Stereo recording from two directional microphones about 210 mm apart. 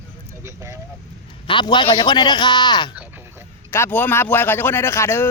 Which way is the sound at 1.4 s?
20° left (ahead or behind).